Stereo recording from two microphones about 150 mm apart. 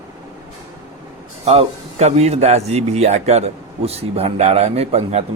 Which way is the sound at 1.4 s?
45° right (ahead or behind).